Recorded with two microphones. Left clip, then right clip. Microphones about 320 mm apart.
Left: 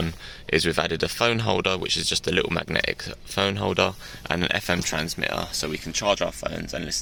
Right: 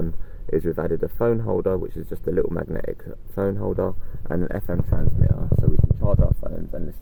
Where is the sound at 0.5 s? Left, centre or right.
Left.